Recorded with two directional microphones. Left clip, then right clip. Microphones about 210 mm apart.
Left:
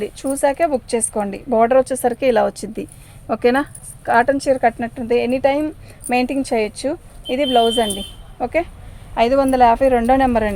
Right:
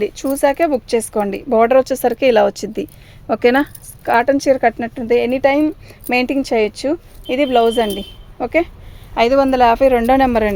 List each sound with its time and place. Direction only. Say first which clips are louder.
0.0 s speech: right 3 dB; 45° right (ahead or behind)